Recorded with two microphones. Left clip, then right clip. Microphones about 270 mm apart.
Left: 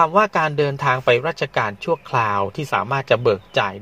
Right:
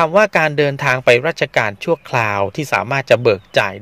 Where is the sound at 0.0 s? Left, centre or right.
Right.